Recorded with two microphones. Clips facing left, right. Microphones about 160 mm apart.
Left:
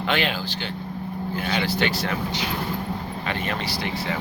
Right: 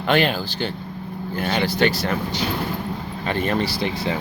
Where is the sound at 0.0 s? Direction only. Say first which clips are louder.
Right 5 dB; 45° right (ahead or behind).